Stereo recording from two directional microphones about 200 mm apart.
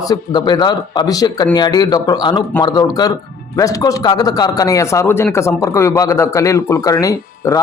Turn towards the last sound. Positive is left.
turn(degrees=15)  # may be behind; listen again after turning